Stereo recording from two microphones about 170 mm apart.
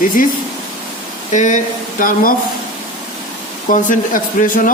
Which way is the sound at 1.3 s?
45° left (ahead or behind).